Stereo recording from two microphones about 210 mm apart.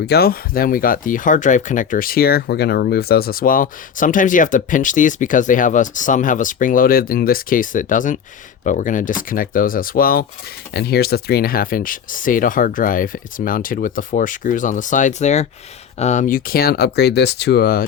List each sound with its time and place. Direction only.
0.0 s speech: 50° left (ahead or behind)